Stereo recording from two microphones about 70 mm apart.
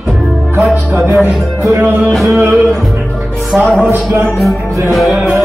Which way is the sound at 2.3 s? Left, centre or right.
Right.